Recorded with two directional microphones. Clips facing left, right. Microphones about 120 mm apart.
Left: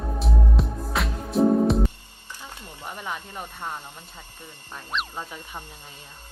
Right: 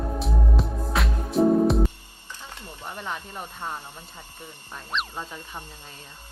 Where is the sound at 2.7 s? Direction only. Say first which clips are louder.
Even; 15° left (ahead or behind).